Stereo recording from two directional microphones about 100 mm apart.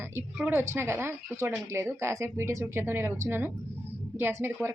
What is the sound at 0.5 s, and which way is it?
A woman's voice, 25° right (ahead or behind).